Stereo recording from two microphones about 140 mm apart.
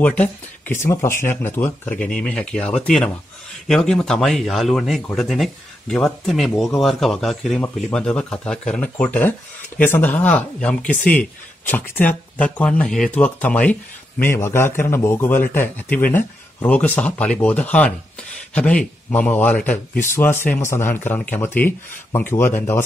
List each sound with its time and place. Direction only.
0.0 s speech: 10° left (ahead or behind)